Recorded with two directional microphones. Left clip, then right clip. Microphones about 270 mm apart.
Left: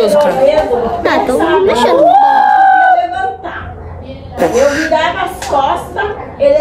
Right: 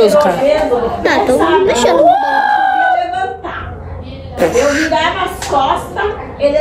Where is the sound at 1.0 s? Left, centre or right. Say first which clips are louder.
Right 1 dB; centre.